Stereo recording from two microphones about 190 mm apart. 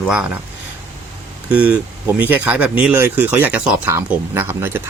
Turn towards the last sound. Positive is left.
turn(degrees=-10)  # may be behind; listen again after turning